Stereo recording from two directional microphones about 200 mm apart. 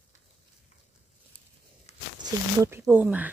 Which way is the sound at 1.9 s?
35° left (ahead or behind).